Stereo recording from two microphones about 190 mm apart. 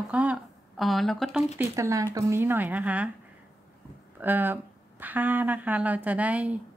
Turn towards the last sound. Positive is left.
turn(degrees=-5)  # may be behind; listen again after turning